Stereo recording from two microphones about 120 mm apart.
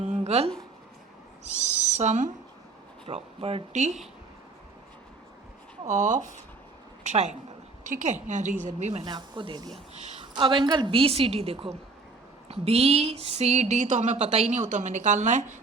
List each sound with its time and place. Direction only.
0.0 s a sound: 75° right (ahead or behind)
1.5 s a woman's voice: 75° right (ahead or behind)
3.1 s speech: 55° right (ahead or behind); by 4.0 s 75° right (ahead or behind)
5.9 s a woman's voice: 90° right
7.0 s a woman's voice: 80° right
7.9 s a woman's voice: 90° right; by 9.0 s 70° right (ahead or behind)
9.0 s speech: 40° right (ahead or behind)
9.9 s a sound: 60° right (ahead or behind)
10.3 s a woman's voice: 40° right (ahead or behind); by 15.5 s 90° right